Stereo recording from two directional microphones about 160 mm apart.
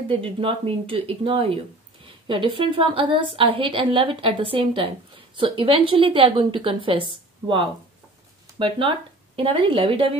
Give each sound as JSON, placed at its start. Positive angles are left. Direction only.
{"t": 0.1, "sound": "a woman's voice", "side_deg": -35}